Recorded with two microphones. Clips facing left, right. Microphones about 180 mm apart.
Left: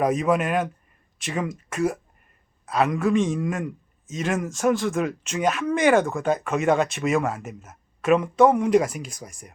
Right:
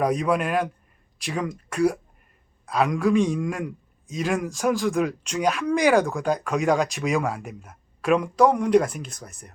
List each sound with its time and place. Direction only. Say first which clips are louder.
0.0 s a man's voice: left 1 dB; 5° left (ahead or behind)